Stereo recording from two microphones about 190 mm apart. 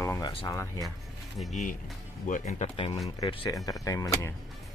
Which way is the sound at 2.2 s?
40° left (ahead or behind).